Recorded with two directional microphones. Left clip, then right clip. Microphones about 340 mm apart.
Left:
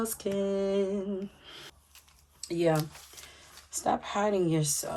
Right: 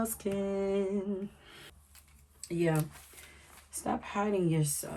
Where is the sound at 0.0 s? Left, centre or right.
Centre.